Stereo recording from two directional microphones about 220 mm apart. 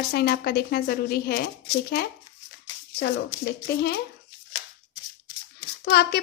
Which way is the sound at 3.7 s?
50° left (ahead or behind).